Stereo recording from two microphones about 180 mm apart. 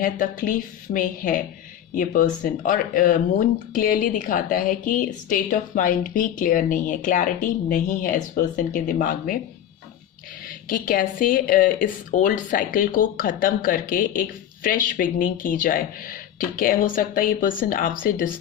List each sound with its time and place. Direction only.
0.0 s speech: 45° left (ahead or behind)
10.4 s speech: 50° left (ahead or behind)